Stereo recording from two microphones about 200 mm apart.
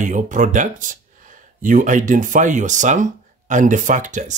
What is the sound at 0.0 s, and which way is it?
Speech, 40° right (ahead or behind).